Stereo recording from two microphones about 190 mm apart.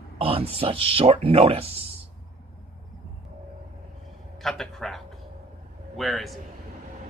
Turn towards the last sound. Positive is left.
turn(degrees=0)  # may be behind; listen again after turning